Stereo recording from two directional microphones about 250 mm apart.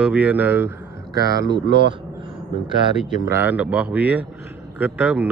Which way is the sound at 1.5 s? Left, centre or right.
Right.